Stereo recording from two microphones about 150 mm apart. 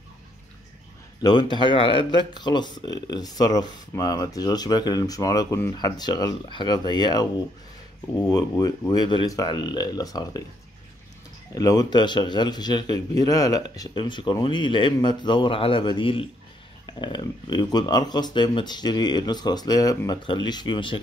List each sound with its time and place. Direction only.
1.2 s speech: 30° left (ahead or behind)
8.3 s speech: 25° left (ahead or behind)
11.5 s speech: 25° left (ahead or behind)